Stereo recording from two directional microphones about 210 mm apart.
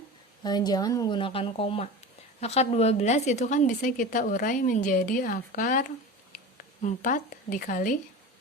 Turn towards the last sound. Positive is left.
turn(degrees=40)  # may be behind; listen again after turning